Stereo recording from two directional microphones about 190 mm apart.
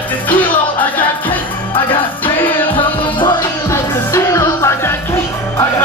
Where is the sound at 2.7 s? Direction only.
25° left (ahead or behind).